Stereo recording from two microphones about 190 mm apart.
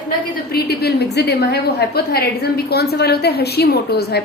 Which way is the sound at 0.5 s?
60° left (ahead or behind).